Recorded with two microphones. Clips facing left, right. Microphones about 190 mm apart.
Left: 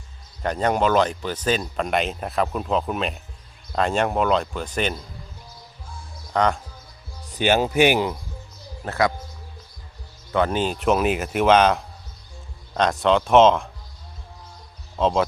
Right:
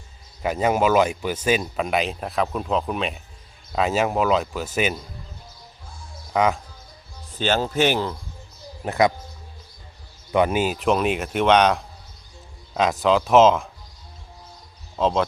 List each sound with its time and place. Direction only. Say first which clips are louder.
0.4 s speech: right 1 dB; 5° right (ahead or behind)
6.3 s speech: right 1 dB; 5° right (ahead or behind)
7.3 s speech: left 3 dB; 15° left (ahead or behind)
8.8 s speech: right 3 dB; 20° right (ahead or behind)
10.3 s speech: right 2 dB; 10° right (ahead or behind)
14.9 s speech: left 1 dB; centre (ahead or behind)